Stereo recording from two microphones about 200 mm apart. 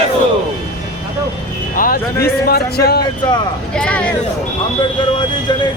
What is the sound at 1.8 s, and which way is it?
Speech, 50° left (ahead or behind).